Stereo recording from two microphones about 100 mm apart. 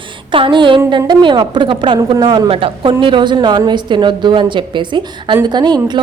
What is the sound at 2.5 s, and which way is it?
A woman's voice, 65° right (ahead or behind).